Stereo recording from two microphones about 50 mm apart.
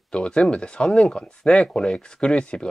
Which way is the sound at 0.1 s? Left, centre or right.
Centre.